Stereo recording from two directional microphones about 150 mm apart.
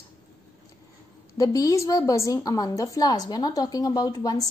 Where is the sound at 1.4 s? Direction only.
20° left (ahead or behind).